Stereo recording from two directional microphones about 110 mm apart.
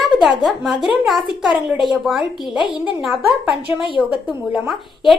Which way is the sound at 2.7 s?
5° right (ahead or behind).